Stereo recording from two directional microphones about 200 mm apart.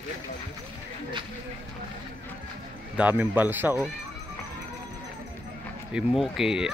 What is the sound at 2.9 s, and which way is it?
Speech, 10° right (ahead or behind).